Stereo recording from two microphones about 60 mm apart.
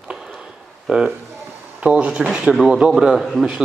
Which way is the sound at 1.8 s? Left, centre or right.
Right.